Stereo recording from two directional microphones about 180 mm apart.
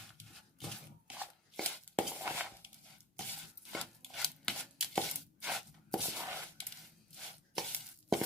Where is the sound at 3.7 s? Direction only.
Centre (ahead or behind).